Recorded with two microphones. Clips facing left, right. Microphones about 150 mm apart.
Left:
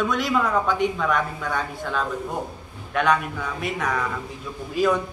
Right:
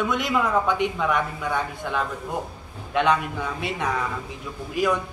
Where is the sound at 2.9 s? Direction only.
25° right (ahead or behind).